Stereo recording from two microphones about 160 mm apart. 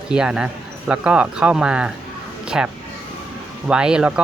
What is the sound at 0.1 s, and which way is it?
Speech, 5° right (ahead or behind).